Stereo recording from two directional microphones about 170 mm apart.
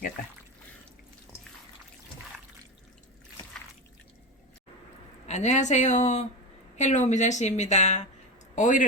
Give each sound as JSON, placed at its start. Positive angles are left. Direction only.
{"t": 5.2, "sound": "a woman's voice", "side_deg": 45}